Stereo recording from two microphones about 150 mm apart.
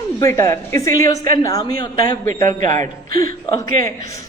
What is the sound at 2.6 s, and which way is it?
Speech, 55° right (ahead or behind).